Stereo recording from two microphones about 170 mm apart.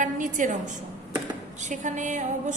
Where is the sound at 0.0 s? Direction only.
50° right (ahead or behind).